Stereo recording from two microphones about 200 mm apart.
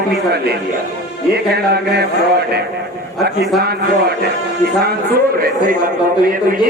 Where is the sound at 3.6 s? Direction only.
50° right (ahead or behind).